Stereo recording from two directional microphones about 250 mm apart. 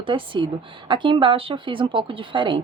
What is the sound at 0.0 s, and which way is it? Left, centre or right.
A woman's voice, centre.